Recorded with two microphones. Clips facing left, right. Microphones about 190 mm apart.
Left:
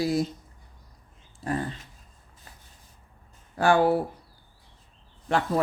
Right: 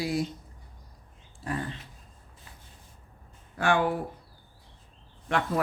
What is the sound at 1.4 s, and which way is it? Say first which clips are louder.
Speech: left 4 dB; 40° left (ahead or behind).